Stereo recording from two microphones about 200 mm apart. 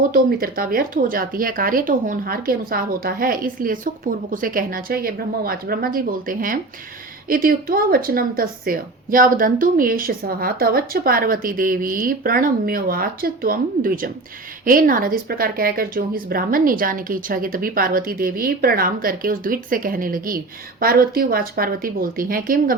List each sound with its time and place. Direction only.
0.1 s a woman's voice: 45° right (ahead or behind)